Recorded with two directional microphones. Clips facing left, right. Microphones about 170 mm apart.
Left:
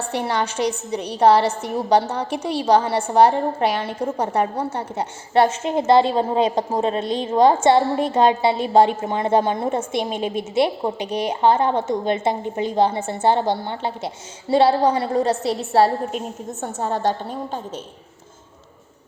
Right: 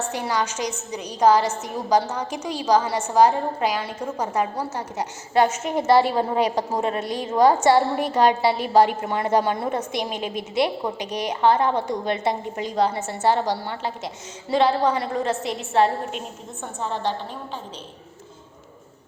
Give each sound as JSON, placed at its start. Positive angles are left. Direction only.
{"t": 0.0, "sound": "a woman's voice", "side_deg": 30}